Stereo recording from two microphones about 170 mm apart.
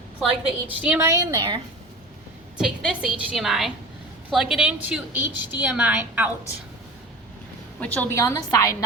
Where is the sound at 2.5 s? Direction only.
5° right (ahead or behind).